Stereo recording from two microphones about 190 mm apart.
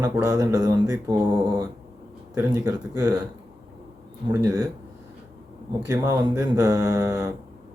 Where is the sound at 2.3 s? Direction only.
20° right (ahead or behind).